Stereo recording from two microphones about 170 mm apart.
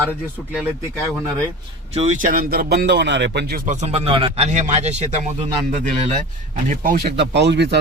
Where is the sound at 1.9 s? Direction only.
40° right (ahead or behind); by 3.6 s 65° right (ahead or behind).